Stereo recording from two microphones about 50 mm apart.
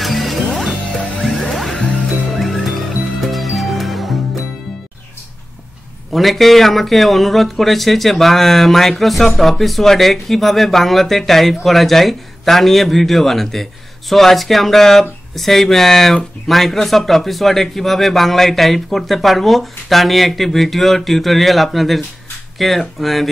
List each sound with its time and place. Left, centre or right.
0.0 s music: centre
0.9 s music: centre
1.2 s music: centre
1.8 s music: centre
2.3 s music: centre
6.1 s speech: centre